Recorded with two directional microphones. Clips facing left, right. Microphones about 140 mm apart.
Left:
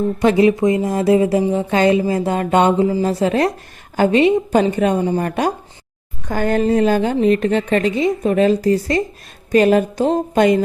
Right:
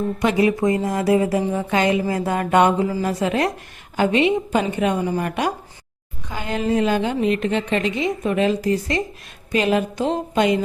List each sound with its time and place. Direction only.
0.2 s a woman's voice: 30° left (ahead or behind)
6.2 s a woman's voice: 50° left (ahead or behind)